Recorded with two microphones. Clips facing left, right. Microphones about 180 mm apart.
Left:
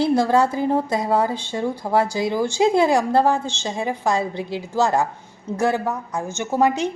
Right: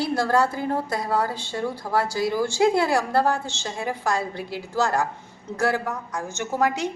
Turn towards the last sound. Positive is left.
turn(degrees=20)  # may be behind; listen again after turning